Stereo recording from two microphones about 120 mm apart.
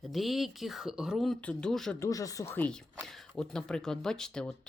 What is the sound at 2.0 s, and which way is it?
Speech, 30° left (ahead or behind).